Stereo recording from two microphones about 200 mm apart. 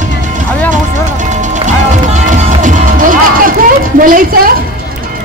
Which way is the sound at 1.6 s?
40° right (ahead or behind).